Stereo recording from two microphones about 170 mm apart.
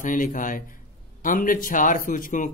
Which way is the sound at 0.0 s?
50° left (ahead or behind).